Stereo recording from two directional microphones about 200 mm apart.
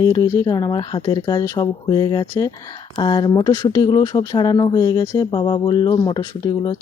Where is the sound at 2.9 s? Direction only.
20° left (ahead or behind).